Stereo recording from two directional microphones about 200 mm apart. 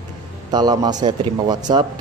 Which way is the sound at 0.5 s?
20° right (ahead or behind).